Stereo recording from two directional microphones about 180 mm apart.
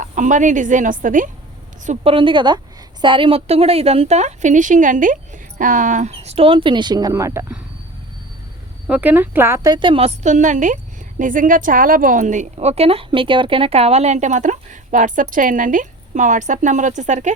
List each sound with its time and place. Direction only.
0.0 s a woman's voice: 45° right (ahead or behind)
2.1 s a woman's voice: 25° right (ahead or behind)
8.9 s a woman's voice: 10° right (ahead or behind); by 17.3 s 40° right (ahead or behind)